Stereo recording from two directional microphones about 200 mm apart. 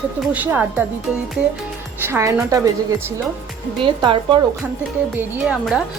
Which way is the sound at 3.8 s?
25° right (ahead or behind).